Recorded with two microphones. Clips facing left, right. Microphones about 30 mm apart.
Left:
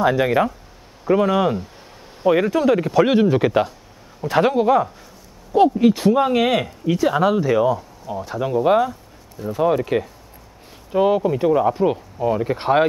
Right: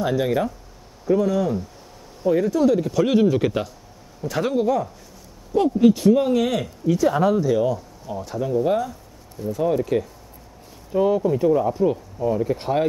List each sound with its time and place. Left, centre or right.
0.0 s speech: left
8.4 s speech: left